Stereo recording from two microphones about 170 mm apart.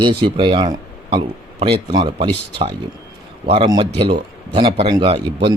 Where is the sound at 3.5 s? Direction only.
30° right (ahead or behind).